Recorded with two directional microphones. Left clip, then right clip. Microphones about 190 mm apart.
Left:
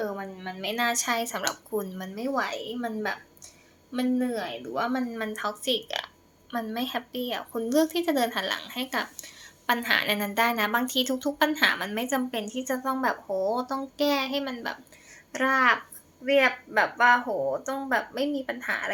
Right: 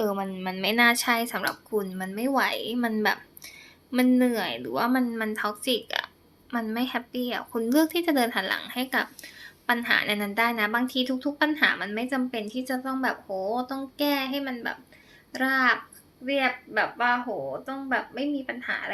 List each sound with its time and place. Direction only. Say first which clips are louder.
0.0 s a woman's voice: right 4 dB; 55° right (ahead or behind)
0.6 s a woman's voice: right 5 dB; 25° right (ahead or behind); by 18.9 s 5° left (ahead or behind)